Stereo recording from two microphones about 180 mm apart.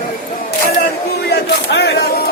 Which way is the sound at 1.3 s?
65° left (ahead or behind).